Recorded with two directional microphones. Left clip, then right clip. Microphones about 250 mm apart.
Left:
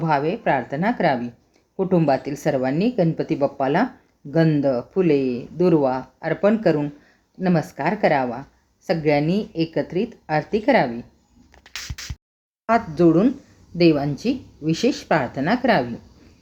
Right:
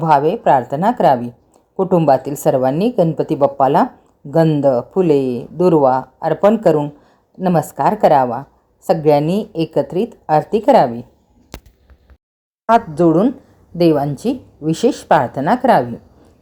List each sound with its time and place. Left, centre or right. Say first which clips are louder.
0.0 s speech: right 8 dB; centre
12.6 s speech: right 5 dB; centre